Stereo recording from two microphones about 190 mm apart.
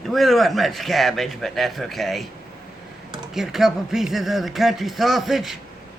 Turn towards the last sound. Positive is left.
turn(degrees=0)  # may be behind; listen again after turning